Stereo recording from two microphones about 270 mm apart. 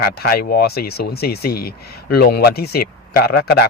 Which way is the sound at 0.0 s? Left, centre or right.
Left.